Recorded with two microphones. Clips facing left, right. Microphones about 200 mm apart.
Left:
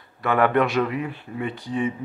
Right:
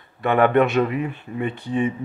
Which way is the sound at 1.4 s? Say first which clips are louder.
Right 3 dB; 60° right (ahead or behind).